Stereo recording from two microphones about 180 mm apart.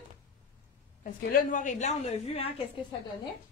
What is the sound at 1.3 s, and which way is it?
A woman's voice, 45° left (ahead or behind).